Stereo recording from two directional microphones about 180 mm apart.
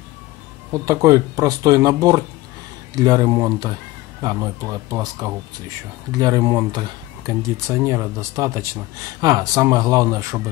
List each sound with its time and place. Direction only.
0.8 s speech: 20° right (ahead or behind)